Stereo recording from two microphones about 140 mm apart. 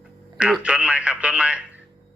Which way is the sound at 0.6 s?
10° right (ahead or behind).